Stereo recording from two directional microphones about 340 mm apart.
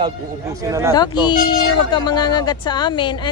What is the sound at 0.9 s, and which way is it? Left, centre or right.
Speech, centre.